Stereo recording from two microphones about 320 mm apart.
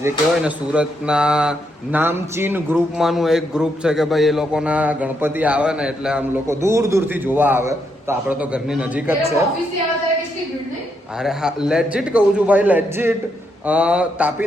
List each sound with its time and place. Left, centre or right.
0.0 s speech: centre
11.2 s speech: centre